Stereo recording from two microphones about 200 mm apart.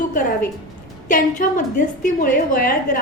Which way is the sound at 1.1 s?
40° left (ahead or behind).